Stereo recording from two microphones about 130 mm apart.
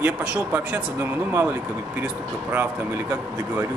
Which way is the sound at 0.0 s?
10° right (ahead or behind).